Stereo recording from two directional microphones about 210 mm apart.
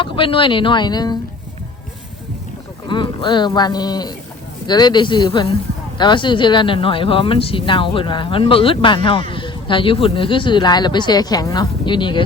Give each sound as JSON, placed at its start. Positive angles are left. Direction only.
{"t": 0.0, "sound": "speech", "side_deg": 25}
{"t": 2.8, "sound": "speech", "side_deg": 20}